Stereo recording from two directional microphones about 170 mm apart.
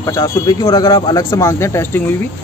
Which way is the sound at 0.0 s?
20° left (ahead or behind).